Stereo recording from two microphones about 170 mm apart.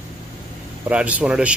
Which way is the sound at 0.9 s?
5° right (ahead or behind).